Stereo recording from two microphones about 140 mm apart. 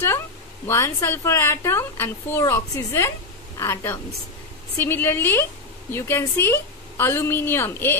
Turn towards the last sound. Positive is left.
turn(degrees=15)  # may be behind; listen again after turning